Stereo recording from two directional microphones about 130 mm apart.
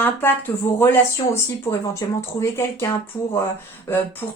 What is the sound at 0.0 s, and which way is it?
Speech, 15° left (ahead or behind).